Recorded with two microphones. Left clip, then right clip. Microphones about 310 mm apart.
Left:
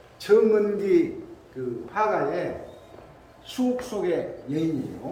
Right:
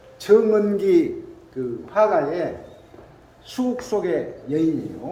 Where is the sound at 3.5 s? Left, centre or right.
Centre.